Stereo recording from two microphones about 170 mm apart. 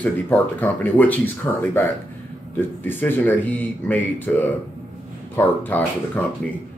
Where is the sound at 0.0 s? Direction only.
10° left (ahead or behind).